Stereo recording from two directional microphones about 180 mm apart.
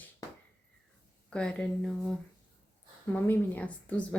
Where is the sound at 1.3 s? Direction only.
5° left (ahead or behind).